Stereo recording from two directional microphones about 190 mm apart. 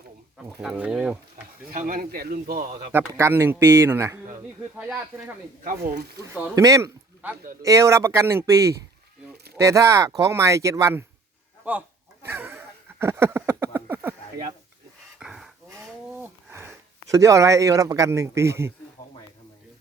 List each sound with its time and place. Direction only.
0.4 s speech: 5° right (ahead or behind)
1.7 s a man's voice: 50° right (ahead or behind)
2.9 s speech: 15° right (ahead or behind)
5.6 s speech: 60° right (ahead or behind)
6.6 s a man's voice: 15° right (ahead or behind)
12.2 s a sound: 10° right (ahead or behind)
15.2 s dog: centre (ahead or behind)
16.2 s speech: 10° right (ahead or behind)